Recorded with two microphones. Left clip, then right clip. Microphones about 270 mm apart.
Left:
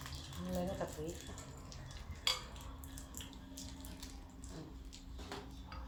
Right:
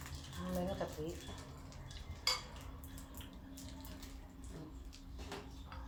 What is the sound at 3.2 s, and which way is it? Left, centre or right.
Water, centre.